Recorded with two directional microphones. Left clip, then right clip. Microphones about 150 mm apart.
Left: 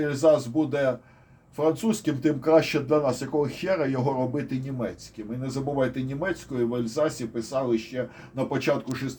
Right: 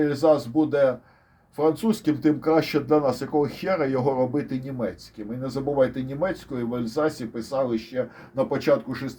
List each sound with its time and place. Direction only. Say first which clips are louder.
0.0 s speech: right 1 dB; 40° right (ahead or behind)